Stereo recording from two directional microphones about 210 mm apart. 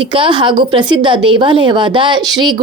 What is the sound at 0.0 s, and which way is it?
A woman's voice, 25° right (ahead or behind).